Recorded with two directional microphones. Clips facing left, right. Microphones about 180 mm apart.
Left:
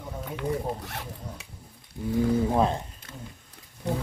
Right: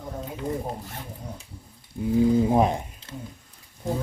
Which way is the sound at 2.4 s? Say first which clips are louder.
Right 3 dB; 15° right (ahead or behind).